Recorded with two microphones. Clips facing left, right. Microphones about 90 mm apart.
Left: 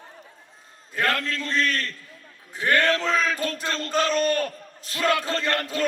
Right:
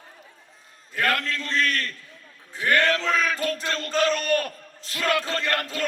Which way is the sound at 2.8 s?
25° left (ahead or behind).